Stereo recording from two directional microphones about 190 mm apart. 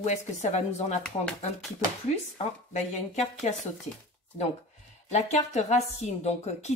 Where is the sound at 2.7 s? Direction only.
35° left (ahead or behind).